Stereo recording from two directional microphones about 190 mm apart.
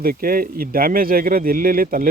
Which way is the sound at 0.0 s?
50° right (ahead or behind).